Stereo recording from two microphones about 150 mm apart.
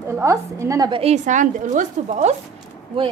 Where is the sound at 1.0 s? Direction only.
50° right (ahead or behind).